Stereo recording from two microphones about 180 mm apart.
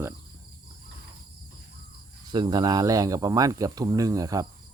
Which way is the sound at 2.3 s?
25° right (ahead or behind).